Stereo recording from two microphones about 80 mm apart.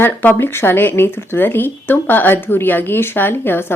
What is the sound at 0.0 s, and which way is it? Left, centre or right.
Speech, left.